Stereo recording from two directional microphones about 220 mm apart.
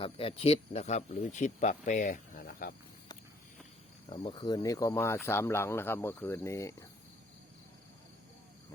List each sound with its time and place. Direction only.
0.0 s speech: 25° left (ahead or behind); by 2.7 s 40° left (ahead or behind)
4.1 s speech: 20° left (ahead or behind)